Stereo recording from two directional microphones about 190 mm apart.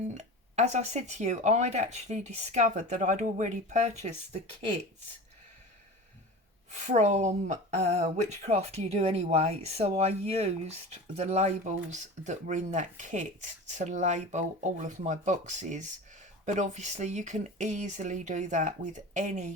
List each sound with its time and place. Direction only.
0.1 s speech: 35° right (ahead or behind)
6.7 s speech: 35° right (ahead or behind)